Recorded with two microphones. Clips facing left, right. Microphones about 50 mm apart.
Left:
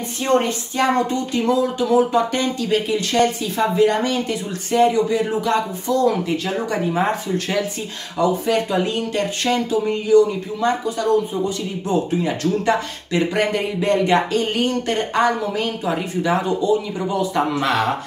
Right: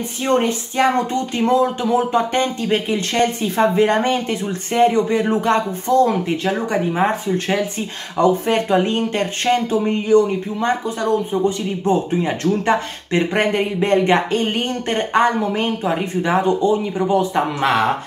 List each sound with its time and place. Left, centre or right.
0.8 s speech: centre
1.3 s speech: right
6.7 s speech: right
8.2 s speech: right